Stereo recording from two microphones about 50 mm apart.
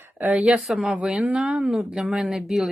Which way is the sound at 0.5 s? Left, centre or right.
Centre.